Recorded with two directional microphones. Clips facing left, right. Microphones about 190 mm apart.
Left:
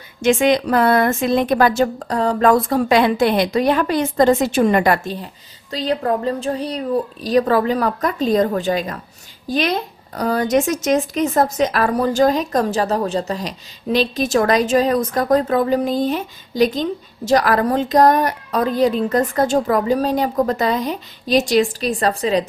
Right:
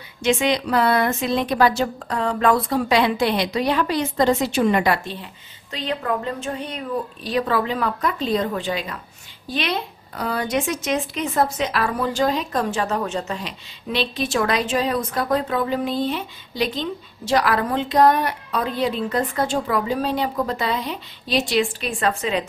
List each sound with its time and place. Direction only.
0.2 s a woman's voice: 50° left (ahead or behind)